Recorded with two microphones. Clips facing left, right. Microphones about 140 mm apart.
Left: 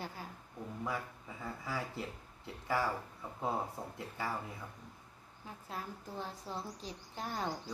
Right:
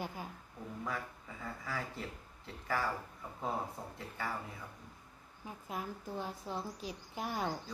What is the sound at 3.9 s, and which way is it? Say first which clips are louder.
Speech: left 1 dB; 5° left (ahead or behind).